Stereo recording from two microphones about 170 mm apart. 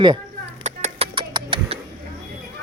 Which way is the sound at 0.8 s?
35° right (ahead or behind).